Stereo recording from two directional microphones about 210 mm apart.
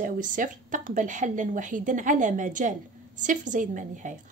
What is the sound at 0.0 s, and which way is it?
A woman's voice, 40° right (ahead or behind).